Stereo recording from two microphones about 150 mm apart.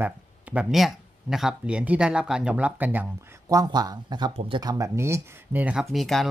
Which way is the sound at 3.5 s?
25° right (ahead or behind).